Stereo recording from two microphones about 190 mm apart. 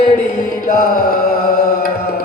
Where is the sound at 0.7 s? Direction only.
45° left (ahead or behind).